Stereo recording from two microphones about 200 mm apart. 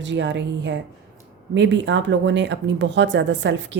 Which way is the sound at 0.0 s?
60° right (ahead or behind).